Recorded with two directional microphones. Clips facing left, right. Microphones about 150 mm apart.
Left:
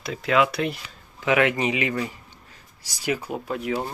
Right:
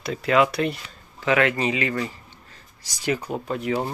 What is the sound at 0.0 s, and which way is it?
Speech, centre (ahead or behind).